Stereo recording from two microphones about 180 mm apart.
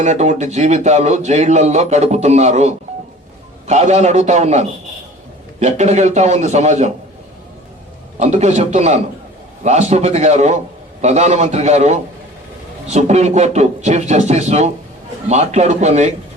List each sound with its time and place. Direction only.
0.0 s a man's voice: 40° right (ahead or behind)
8.2 s a man's voice: 40° right (ahead or behind)